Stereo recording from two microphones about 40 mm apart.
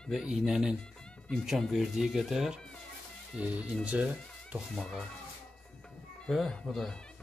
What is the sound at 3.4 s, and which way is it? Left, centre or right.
Speech, right.